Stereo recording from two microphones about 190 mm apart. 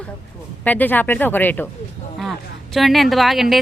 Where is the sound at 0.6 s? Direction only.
10° left (ahead or behind).